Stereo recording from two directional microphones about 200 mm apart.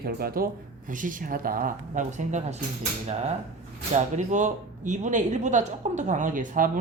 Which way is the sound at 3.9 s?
35° right (ahead or behind).